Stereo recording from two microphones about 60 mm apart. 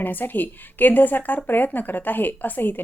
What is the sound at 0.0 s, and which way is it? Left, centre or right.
A woman's voice, left.